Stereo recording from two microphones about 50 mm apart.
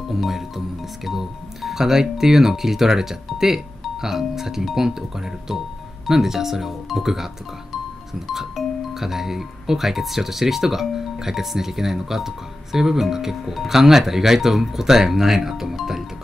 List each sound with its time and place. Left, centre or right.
0.1 s music: centre